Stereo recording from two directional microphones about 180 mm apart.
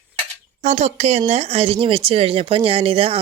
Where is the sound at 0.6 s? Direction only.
40° right (ahead or behind).